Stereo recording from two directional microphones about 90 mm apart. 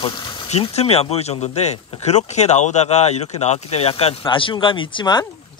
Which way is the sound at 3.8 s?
80° left.